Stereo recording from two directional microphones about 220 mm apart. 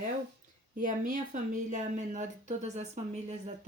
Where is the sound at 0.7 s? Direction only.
35° right (ahead or behind).